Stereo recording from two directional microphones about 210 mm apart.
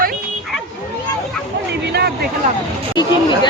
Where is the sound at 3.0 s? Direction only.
20° left (ahead or behind).